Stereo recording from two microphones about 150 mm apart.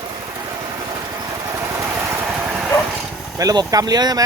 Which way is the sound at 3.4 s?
25° right (ahead or behind).